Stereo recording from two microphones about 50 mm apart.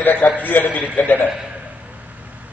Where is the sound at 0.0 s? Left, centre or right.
Left.